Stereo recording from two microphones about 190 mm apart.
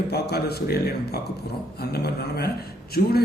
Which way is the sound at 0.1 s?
60° left (ahead or behind).